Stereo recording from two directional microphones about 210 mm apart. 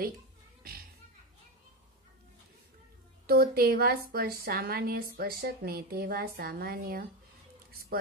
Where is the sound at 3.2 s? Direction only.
45° right (ahead or behind).